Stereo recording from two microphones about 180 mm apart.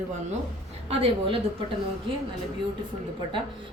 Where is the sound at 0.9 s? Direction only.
35° right (ahead or behind).